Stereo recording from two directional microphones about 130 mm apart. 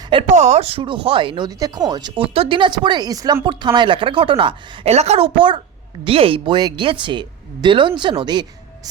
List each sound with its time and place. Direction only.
0.3 s speech: 65° right (ahead or behind); by 1.5 s 40° right (ahead or behind)
1.5 s speech: 30° right (ahead or behind)